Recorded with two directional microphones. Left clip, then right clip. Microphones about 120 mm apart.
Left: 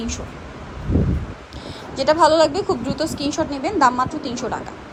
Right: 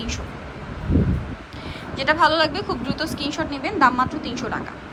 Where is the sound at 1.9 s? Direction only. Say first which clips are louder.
Left 3 dB; 45° left (ahead or behind).